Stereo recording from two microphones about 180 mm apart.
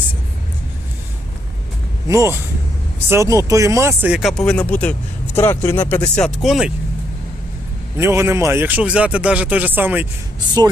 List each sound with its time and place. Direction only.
2.0 s speech: 15° right (ahead or behind); by 6.7 s centre (ahead or behind)
7.9 s speech: 15° right (ahead or behind)